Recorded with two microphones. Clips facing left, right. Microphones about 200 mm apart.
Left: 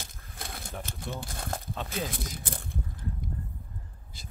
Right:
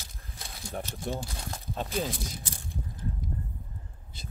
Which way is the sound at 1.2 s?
55° left (ahead or behind).